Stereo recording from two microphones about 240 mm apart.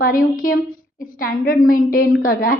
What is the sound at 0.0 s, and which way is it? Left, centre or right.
A woman's voice, left.